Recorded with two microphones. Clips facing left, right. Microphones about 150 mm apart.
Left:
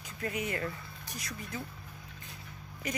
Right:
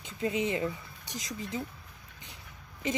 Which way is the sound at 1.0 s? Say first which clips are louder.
Right 4 dB; 90° right.